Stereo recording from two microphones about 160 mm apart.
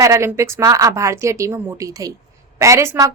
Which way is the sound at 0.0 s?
15° right (ahead or behind).